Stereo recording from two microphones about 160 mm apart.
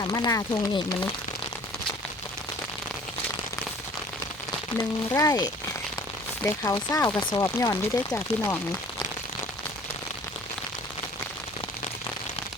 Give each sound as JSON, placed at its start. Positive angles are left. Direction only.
{"t": 0.0, "sound": "speech", "side_deg": 25}
{"t": 4.8, "sound": "speech", "side_deg": 20}